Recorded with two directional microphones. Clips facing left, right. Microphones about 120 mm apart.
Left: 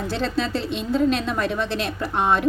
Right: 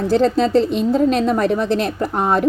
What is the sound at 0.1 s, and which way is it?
A woman's voice, 45° right (ahead or behind).